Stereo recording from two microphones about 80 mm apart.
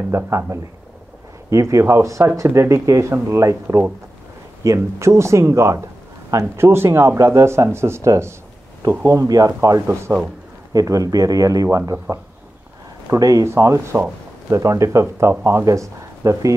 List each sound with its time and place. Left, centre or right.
0.1 s speech: right
1.5 s speech: right
3.6 s speech: right
10.7 s speech: right